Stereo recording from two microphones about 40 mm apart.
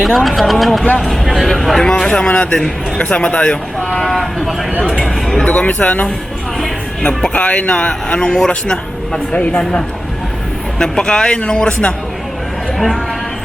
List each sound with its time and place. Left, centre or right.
0.0 s speech: centre
2.0 s speech: left
3.8 s speech: centre
4.1 s speech: centre
5.5 s speech: left
7.0 s speech: left